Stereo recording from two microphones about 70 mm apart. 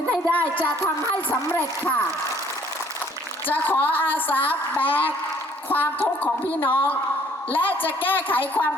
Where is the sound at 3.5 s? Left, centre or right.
Left.